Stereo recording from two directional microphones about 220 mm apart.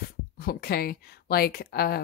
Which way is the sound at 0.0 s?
45° left (ahead or behind).